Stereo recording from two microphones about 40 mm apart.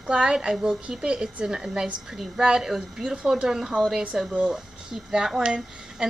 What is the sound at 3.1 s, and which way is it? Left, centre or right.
A woman's voice, centre.